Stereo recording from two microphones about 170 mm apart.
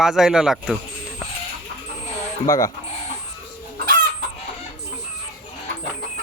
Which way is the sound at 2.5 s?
20° left (ahead or behind).